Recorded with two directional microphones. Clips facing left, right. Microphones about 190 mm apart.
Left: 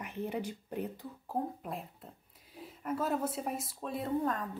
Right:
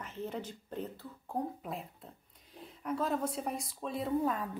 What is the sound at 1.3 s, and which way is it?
Speech, centre (ahead or behind).